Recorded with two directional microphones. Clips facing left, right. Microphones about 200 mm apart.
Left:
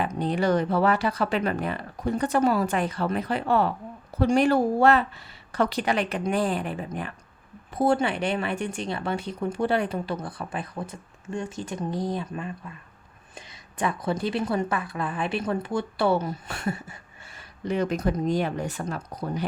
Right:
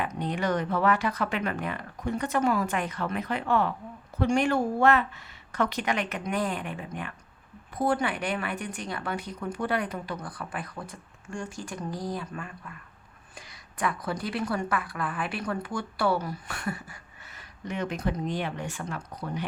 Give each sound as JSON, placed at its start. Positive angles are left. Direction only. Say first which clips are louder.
{"t": 0.0, "sound": "a woman's voice", "louder": "left 5 dB", "side_deg": 30}